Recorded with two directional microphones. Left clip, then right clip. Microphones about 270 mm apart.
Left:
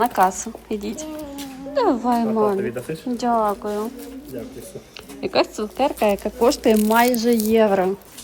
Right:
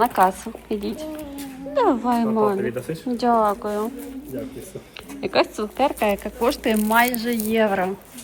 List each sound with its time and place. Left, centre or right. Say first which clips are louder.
0.0 s speech: even; centre
2.6 s speech: even; centre
3.2 s speech: right 1 dB; centre
5.2 s speech: even; centre